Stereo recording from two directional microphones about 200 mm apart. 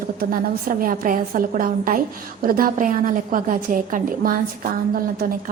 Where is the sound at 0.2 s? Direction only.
45° right (ahead or behind).